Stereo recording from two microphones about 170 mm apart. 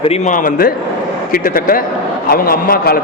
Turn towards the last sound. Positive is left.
turn(degrees=60)  # may be behind; listen again after turning